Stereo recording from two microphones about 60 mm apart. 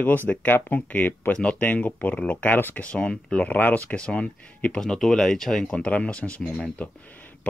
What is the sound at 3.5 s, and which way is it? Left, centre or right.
Speech, left.